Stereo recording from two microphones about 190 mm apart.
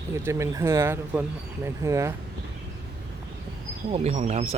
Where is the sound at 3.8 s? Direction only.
30° right (ahead or behind).